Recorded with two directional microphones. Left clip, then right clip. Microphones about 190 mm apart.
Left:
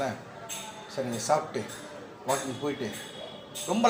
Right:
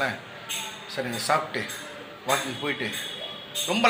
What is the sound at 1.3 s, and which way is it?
Speech, centre (ahead or behind).